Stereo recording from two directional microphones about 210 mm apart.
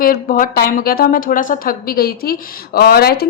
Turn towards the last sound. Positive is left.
turn(degrees=45)  # may be behind; listen again after turning